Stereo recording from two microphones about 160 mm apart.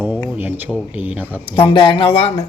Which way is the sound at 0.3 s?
10° right (ahead or behind).